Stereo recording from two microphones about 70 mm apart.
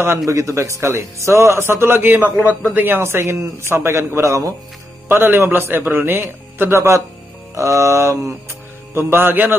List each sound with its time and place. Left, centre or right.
0.2 s a man's voice: right
5.0 s a man's voice: right
8.9 s a man's voice: right